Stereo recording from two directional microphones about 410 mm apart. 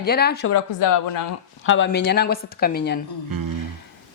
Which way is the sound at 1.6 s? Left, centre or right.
Left.